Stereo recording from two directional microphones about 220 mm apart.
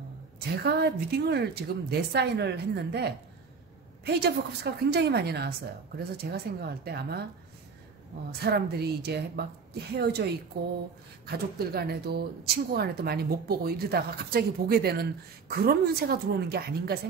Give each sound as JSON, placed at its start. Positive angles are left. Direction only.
{"t": 0.7, "sound": "speech", "side_deg": -45}
{"t": 8.3, "sound": "speech", "side_deg": -45}